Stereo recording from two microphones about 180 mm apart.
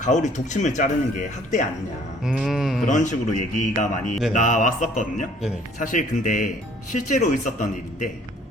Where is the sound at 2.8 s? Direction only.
45° left (ahead or behind).